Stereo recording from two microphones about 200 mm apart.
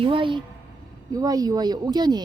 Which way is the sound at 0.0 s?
25° right (ahead or behind).